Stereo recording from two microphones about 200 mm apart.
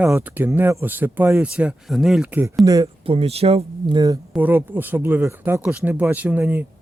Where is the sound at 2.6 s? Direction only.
20° right (ahead or behind).